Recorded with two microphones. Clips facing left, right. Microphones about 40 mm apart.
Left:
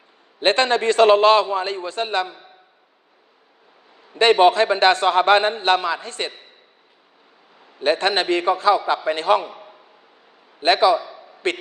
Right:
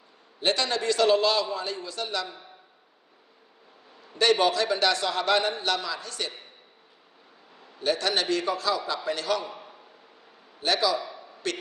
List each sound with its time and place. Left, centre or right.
0.3 s a man's voice: left
4.1 s a man's voice: left
7.8 s a man's voice: left
10.6 s a man's voice: left